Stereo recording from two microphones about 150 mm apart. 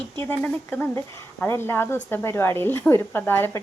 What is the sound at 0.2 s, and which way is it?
A woman's voice, 15° left (ahead or behind).